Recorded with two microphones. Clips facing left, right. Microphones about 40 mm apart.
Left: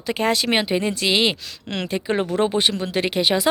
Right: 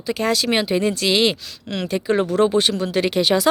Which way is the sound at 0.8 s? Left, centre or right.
Centre.